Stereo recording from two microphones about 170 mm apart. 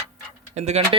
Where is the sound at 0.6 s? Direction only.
40° right (ahead or behind).